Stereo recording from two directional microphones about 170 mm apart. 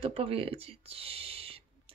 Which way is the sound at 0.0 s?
35° right (ahead or behind).